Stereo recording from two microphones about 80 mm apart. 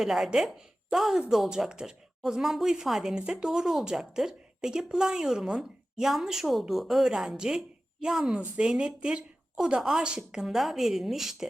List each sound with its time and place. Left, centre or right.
0.0 s a woman's voice: centre